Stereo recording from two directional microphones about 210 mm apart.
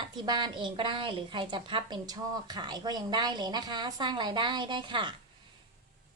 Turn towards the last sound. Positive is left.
turn(degrees=-20)  # may be behind; listen again after turning